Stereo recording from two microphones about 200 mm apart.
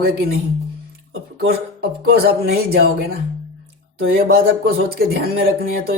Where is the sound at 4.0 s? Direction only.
50° right (ahead or behind).